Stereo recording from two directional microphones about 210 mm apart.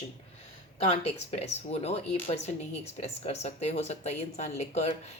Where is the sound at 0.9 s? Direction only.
30° left (ahead or behind).